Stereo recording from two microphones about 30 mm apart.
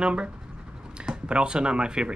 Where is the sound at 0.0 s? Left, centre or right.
Right.